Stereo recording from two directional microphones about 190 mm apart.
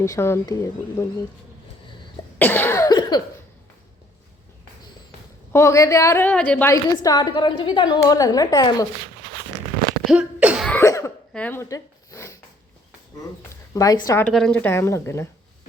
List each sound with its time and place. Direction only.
0.0 s a woman's voice: 15° left (ahead or behind)
2.4 s cough: 10° left (ahead or behind)
5.5 s a woman's voice: 15° left (ahead or behind)
6.9 s a woman's voice: 20° left (ahead or behind)
10.1 s cough: 5° right (ahead or behind)
10.7 s cough: 15° left (ahead or behind)
13.7 s a woman's voice: 20° left (ahead or behind)
14.3 s a woman's voice: 5° left (ahead or behind)